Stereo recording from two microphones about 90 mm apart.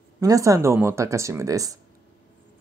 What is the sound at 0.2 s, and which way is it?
Speech, 35° right (ahead or behind).